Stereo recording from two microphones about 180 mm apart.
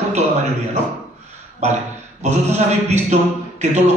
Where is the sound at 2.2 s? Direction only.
40° right (ahead or behind).